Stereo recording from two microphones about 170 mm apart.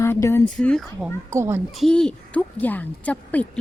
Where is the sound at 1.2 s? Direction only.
15° right (ahead or behind).